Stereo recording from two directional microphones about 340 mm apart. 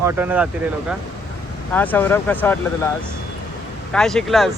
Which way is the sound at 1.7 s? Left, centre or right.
Centre.